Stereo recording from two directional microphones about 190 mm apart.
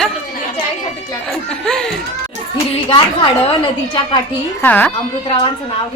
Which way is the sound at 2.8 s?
25° left (ahead or behind).